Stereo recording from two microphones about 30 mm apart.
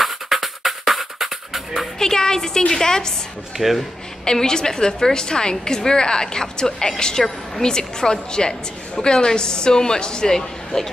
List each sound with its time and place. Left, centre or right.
0.0 s music: centre
2.0 s a woman's voice: left
3.5 s speech: centre
4.2 s a woman's voice: left
10.3 s speech: centre